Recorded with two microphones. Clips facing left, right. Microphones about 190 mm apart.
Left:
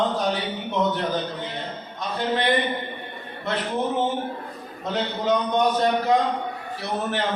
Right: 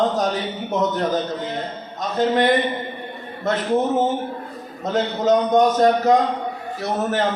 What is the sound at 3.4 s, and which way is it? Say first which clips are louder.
A man's voice: right 6 dB; 45° right (ahead or behind).